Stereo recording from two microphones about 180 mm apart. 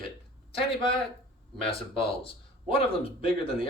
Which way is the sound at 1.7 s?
30° left (ahead or behind).